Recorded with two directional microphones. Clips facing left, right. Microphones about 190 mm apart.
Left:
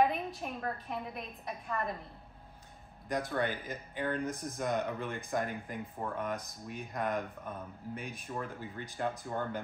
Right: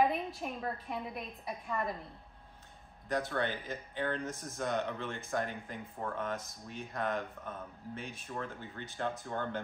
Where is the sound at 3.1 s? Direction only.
15° left (ahead or behind).